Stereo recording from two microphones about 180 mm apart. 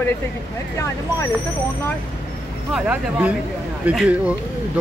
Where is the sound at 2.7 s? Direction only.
5° right (ahead or behind).